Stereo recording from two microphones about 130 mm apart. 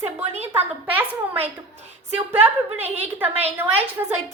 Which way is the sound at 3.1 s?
15° right (ahead or behind).